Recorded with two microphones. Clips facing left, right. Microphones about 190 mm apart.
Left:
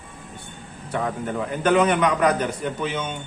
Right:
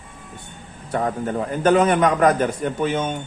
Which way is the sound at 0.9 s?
40° right (ahead or behind).